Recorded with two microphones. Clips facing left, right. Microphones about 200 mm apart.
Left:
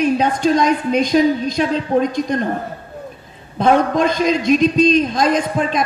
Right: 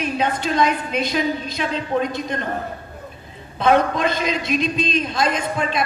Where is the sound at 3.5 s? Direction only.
45° left (ahead or behind).